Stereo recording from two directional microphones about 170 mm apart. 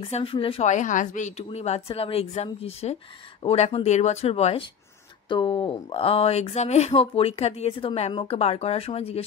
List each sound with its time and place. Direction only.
0.0 s speech: 30° left (ahead or behind)